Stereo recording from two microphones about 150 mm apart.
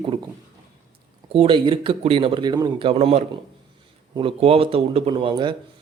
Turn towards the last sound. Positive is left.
turn(degrees=-35)  # may be behind; listen again after turning